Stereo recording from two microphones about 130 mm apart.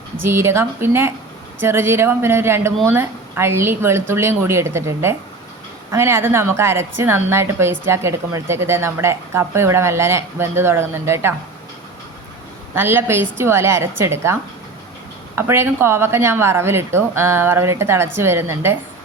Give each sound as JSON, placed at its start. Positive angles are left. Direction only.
{"t": 0.2, "sound": "a woman's voice", "side_deg": -20}
{"t": 12.7, "sound": "a woman's voice", "side_deg": -15}
{"t": 15.4, "sound": "a woman's voice", "side_deg": -20}